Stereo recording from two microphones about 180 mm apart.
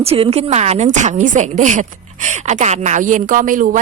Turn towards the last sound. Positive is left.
turn(degrees=-45)  # may be behind; listen again after turning